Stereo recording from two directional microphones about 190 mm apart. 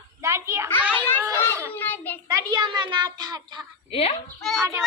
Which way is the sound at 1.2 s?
15° right (ahead or behind).